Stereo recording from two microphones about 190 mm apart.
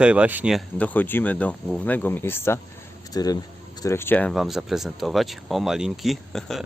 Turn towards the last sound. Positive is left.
turn(degrees=0)  # may be behind; listen again after turning